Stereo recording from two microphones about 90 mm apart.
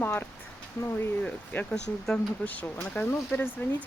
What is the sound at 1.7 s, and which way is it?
Speech, 10° left (ahead or behind).